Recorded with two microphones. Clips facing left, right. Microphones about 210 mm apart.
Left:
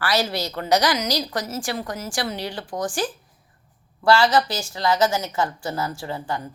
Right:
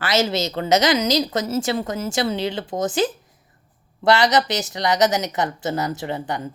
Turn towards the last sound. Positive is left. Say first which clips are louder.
# right 3 dB
turn(degrees=-20)  # may be behind; listen again after turning